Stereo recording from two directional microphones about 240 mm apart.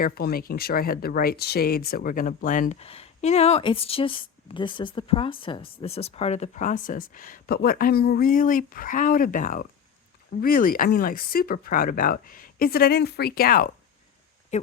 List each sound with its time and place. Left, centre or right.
0.0 s speech: left